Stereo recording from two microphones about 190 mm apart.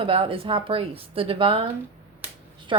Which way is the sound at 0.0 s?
30° right (ahead or behind).